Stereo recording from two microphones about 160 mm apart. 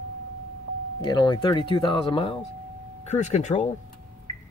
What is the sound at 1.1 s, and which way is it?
Speech, 25° left (ahead or behind).